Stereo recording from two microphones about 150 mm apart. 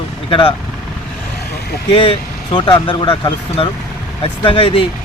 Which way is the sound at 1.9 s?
35° left (ahead or behind).